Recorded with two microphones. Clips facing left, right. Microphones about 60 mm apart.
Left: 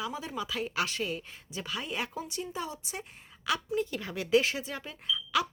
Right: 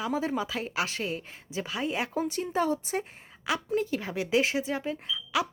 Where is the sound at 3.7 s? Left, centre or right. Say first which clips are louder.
Right 3 dB; right.